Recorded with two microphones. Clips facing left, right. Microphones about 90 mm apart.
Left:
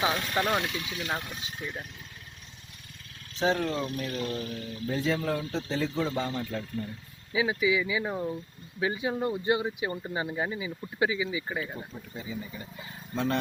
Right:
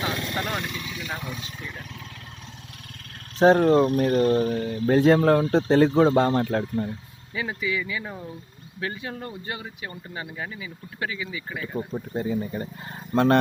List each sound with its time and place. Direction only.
0.0 s speech: 15° left (ahead or behind)
3.3 s speech: 45° right (ahead or behind)
4.7 s speech: 65° right (ahead or behind)
7.3 s speech: 10° left (ahead or behind)
11.9 s speech: 55° right (ahead or behind)